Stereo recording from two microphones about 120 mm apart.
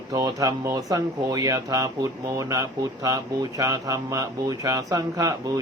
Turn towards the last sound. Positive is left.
turn(degrees=-30)  # may be behind; listen again after turning